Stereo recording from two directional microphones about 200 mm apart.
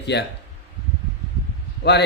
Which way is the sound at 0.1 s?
60° left (ahead or behind).